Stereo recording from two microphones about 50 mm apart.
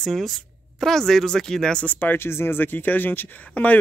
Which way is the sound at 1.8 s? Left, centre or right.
Left.